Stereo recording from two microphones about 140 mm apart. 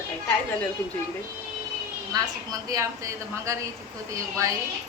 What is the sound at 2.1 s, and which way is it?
A woman's voice, 25° right (ahead or behind).